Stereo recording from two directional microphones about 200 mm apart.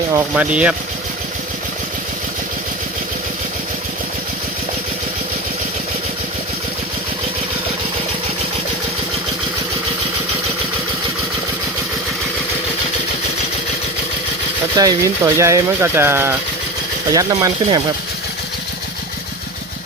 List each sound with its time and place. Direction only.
0.1 s speech: 10° right (ahead or behind)
14.8 s speech: 15° right (ahead or behind)